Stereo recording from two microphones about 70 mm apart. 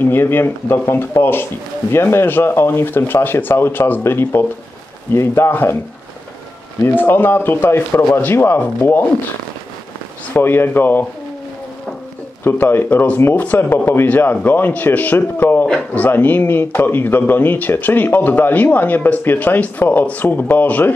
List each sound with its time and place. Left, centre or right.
0.0 s speech: left
6.8 s speech: left
10.3 s a man's voice: left
12.4 s a man's voice: left
15.6 s a man's voice: centre